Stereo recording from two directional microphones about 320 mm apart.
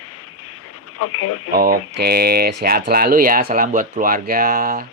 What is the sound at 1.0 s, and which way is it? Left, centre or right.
Speech, left.